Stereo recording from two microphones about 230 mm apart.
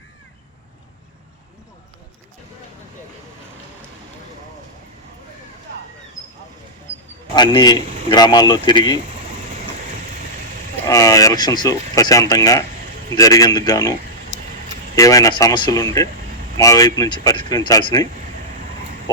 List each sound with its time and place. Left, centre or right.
7.3 s speech: centre
10.8 s speech: centre
14.9 s speech: centre